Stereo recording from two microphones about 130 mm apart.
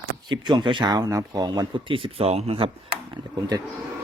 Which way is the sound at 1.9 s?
50° right (ahead or behind).